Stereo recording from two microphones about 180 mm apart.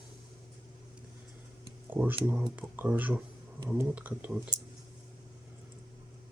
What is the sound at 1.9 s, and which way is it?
Speech, 10° right (ahead or behind).